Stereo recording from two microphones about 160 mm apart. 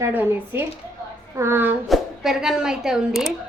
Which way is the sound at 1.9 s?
Centre (ahead or behind).